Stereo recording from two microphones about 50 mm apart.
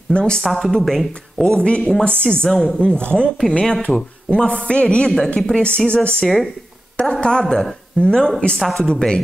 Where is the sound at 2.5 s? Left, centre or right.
Centre.